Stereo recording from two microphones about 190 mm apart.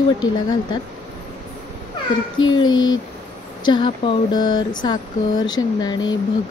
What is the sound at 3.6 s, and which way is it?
Speech, 25° left (ahead or behind).